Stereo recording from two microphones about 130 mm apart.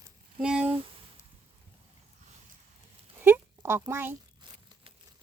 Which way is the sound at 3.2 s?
15° right (ahead or behind).